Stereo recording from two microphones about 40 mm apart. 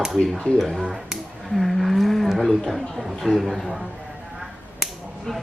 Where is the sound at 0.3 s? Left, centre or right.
Left.